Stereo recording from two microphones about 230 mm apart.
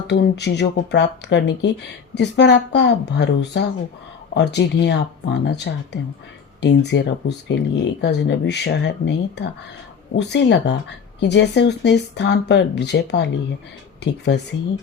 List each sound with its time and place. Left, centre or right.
0.1 s speech: left